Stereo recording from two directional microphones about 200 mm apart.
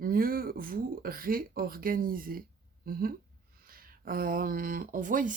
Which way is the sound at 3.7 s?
45° right (ahead or behind).